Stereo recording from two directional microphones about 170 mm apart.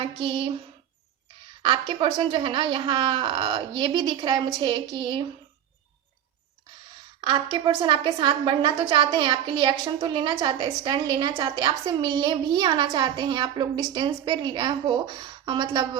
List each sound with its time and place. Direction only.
0.2 s a woman's voice: 30° right (ahead or behind)
1.6 s a woman's voice: 30° right (ahead or behind)
7.2 s a woman's voice: 25° right (ahead or behind)